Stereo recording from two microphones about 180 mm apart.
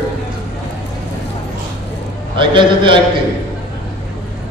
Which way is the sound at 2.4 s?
25° right (ahead or behind).